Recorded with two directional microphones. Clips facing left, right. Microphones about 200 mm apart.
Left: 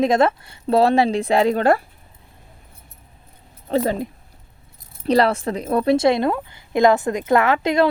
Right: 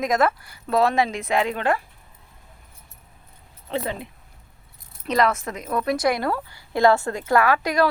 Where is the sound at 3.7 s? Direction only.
40° left (ahead or behind).